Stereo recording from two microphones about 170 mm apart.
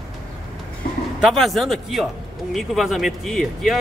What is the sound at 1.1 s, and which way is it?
Speech, centre (ahead or behind).